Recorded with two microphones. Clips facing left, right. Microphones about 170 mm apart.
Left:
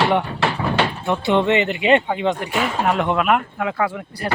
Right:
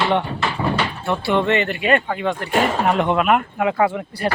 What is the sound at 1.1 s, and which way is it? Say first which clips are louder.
Speech: even; 20° left (ahead or behind).